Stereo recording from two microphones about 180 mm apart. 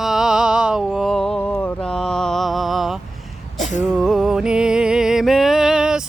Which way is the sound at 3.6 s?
40° left (ahead or behind).